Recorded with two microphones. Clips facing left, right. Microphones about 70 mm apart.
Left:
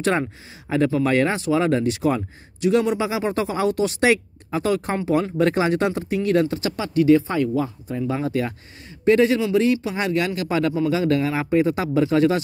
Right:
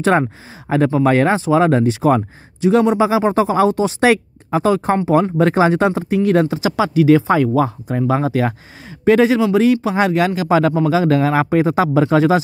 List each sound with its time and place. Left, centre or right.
0.0 s speech: right
6.5 s speech: right
8.3 s speech: right
9.0 s speech: right
9.4 s speech: right